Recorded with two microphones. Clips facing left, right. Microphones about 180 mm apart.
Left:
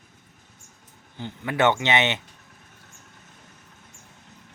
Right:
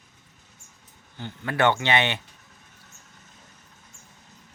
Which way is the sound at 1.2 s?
20° left (ahead or behind).